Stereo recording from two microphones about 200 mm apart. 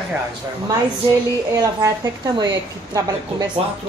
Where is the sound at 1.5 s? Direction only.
15° right (ahead or behind).